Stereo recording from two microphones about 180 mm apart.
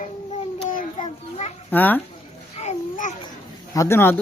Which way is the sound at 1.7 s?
10° left (ahead or behind).